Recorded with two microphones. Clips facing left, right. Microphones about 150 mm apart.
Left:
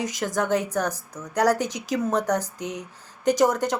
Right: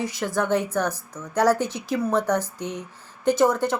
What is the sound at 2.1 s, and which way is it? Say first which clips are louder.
Speech: right 2 dB; 40° left (ahead or behind).